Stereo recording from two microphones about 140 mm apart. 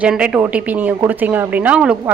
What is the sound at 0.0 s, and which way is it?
A woman's voice, 10° right (ahead or behind).